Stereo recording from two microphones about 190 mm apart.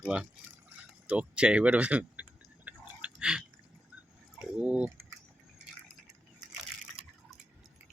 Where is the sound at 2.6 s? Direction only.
5° right (ahead or behind).